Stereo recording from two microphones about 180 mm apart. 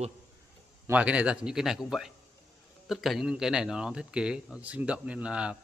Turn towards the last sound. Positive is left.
turn(degrees=-5)  # may be behind; listen again after turning